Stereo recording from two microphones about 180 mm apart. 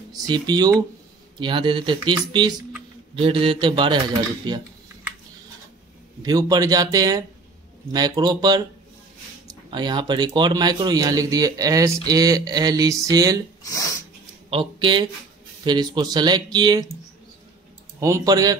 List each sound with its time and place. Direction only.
0.3 s speech: 25° right (ahead or behind)
6.2 s speech: 20° right (ahead or behind)
13.6 s speech: 20° left (ahead or behind)
14.5 s speech: 30° right (ahead or behind)
18.0 s speech: 20° right (ahead or behind)